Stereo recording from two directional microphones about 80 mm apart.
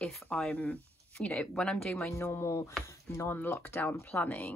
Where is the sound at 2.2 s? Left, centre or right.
Left.